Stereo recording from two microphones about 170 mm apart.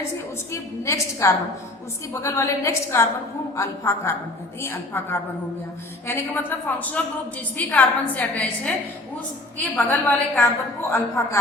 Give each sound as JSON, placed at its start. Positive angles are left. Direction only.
{"t": 0.5, "sound": "a woman's voice", "side_deg": 15}
{"t": 9.7, "sound": "a woman's voice", "side_deg": 10}